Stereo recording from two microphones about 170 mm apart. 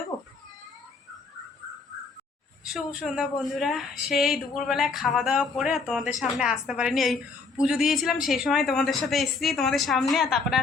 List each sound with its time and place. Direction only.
0.1 s cat: 25° left (ahead or behind)
2.6 s speech: 5° right (ahead or behind)